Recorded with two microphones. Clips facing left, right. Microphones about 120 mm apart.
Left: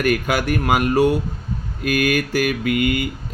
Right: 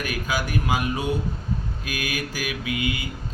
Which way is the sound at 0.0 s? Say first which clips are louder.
Left 8 dB; 60° left (ahead or behind).